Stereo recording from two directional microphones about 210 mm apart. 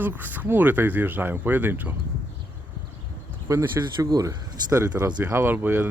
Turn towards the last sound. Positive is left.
turn(degrees=-10)  # may be behind; listen again after turning